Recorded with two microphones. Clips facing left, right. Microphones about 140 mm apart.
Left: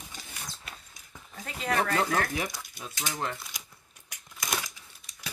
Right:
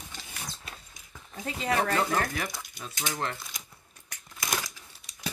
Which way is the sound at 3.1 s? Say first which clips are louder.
Even; centre (ahead or behind).